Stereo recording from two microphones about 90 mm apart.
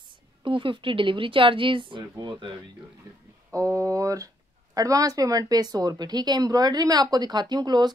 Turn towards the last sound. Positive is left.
turn(degrees=-50)  # may be behind; listen again after turning